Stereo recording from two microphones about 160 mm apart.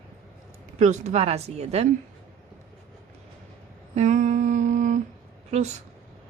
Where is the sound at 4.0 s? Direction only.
50° right (ahead or behind).